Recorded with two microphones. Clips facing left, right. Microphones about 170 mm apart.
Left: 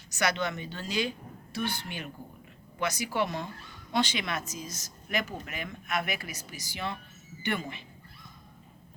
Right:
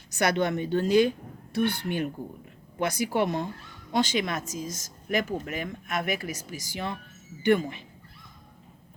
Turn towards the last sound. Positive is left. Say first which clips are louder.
# right 10 dB
turn(degrees=-45)  # may be behind; listen again after turning